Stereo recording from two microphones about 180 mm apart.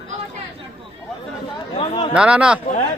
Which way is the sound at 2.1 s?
5° right (ahead or behind).